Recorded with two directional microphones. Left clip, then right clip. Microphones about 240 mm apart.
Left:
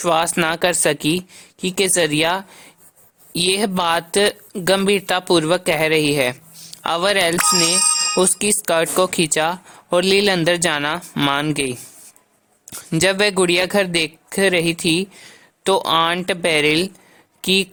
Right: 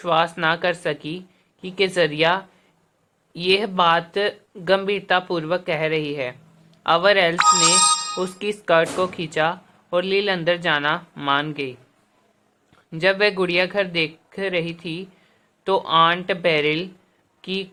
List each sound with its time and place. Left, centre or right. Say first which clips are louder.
0.0 s speech: left 2 dB; left
12.7 s speech: left 2 dB; left